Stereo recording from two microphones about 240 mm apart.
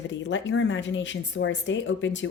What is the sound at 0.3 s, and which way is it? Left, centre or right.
Speech, left.